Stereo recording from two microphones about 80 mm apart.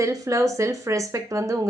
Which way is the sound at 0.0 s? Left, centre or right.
Right.